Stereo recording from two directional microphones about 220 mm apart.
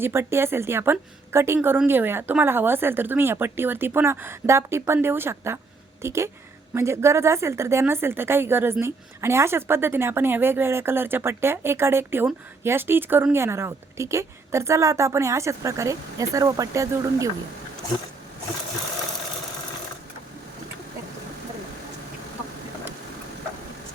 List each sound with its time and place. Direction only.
0.0 s a woman's voice: 10° right (ahead or behind)